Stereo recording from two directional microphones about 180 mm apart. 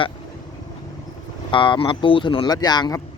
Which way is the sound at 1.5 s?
25° left (ahead or behind).